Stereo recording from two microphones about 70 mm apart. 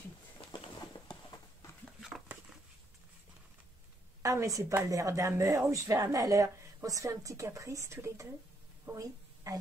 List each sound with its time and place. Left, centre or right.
0.5 s a sound: left
2.0 s patter: centre
4.2 s a woman's voice: right
8.9 s a woman's voice: right